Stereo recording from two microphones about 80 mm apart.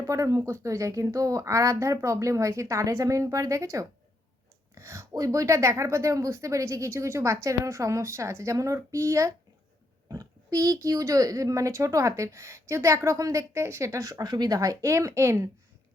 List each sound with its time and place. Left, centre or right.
0.0 s a woman's voice: right